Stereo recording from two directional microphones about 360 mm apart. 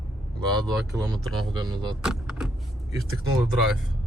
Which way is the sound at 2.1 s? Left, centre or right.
Centre.